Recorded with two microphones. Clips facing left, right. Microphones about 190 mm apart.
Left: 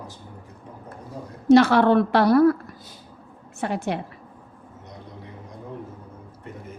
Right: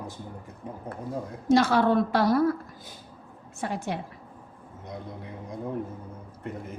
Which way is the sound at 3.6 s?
70° left (ahead or behind).